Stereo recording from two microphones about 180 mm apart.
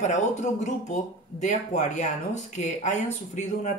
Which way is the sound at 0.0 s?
40° left (ahead or behind).